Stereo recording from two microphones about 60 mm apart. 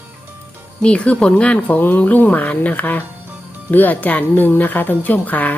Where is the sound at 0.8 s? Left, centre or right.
Centre.